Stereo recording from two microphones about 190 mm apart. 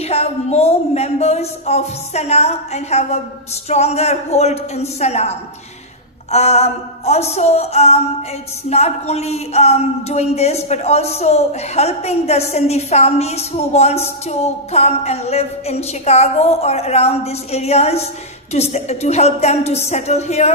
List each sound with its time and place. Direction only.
0.0 s speech: 35° left (ahead or behind)